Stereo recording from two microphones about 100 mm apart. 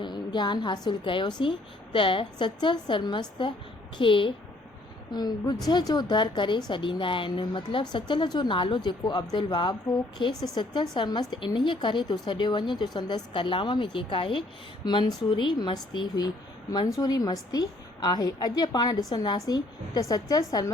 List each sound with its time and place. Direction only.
0.0 s a woman's voice: 45° left (ahead or behind)
5.1 s a woman's voice: 45° left (ahead or behind); by 14.4 s 60° left (ahead or behind)
14.8 s a woman's voice: 50° left (ahead or behind)